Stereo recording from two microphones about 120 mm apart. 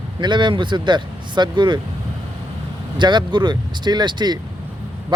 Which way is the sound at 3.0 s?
40° right (ahead or behind).